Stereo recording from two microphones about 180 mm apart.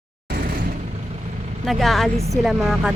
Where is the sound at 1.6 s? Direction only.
Centre (ahead or behind).